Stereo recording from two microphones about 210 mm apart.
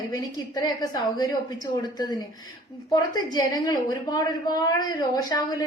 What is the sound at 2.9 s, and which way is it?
A woman's voice, 20° left (ahead or behind).